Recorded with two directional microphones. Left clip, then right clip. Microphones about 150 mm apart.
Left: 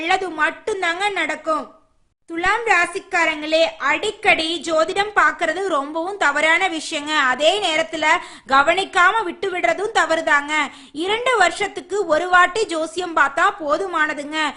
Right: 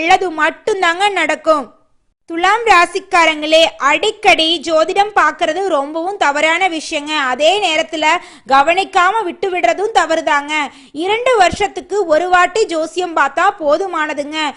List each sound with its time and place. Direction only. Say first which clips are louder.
0.0 s a woman's voice: right 7 dB; 40° right (ahead or behind)